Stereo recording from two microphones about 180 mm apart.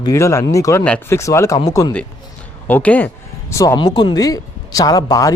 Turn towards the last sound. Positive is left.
turn(degrees=20)  # may be behind; listen again after turning